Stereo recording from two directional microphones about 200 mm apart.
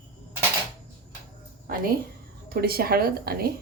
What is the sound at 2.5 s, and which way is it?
A woman's voice, 50° right (ahead or behind).